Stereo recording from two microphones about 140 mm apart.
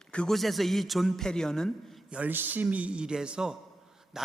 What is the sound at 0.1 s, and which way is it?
A man's voice, 5° left (ahead or behind).